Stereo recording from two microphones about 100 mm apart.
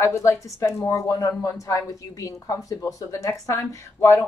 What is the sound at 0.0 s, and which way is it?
Speech, 30° left (ahead or behind).